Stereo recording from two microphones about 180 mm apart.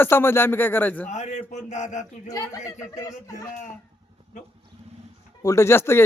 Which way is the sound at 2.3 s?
20° left (ahead or behind).